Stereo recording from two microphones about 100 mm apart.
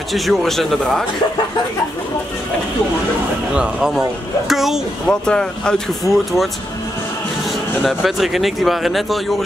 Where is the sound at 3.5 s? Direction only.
5° right (ahead or behind).